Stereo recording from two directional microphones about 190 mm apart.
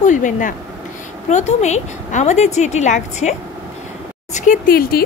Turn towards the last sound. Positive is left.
turn(degrees=50)  # may be behind; listen again after turning